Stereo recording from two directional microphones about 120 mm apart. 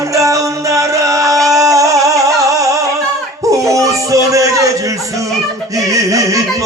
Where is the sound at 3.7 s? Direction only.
25° right (ahead or behind).